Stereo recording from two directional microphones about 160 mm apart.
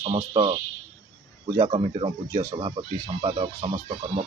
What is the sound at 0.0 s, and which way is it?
Speech, 35° right (ahead or behind).